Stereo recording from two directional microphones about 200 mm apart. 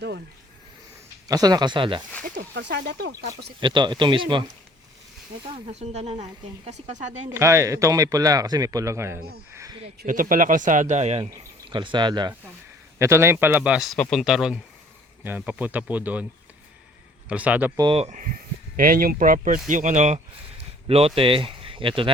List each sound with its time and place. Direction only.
1.3 s speech: 20° right (ahead or behind)
2.2 s speech: 45° right (ahead or behind)
2.6 s speech: 60° right (ahead or behind)
3.6 s speech: 25° right (ahead or behind)
5.5 s speech: 35° right (ahead or behind)
7.3 s speech: 15° right (ahead or behind)
10.0 s a man's voice: 45° right (ahead or behind); by 16.2 s 10° right (ahead or behind)
17.2 s speech: 5° right (ahead or behind)
17.7 s speech: 25° right (ahead or behind)